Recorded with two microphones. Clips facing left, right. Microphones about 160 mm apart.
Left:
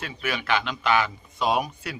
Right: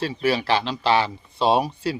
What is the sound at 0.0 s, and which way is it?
A man's voice, 35° right (ahead or behind).